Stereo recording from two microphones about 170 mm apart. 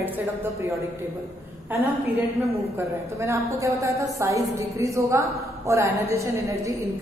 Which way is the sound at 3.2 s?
15° right (ahead or behind).